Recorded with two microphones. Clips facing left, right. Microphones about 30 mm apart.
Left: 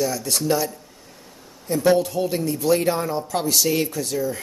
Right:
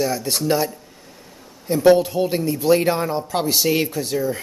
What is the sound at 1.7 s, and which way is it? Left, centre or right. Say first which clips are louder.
Speech: right 4 dB; centre.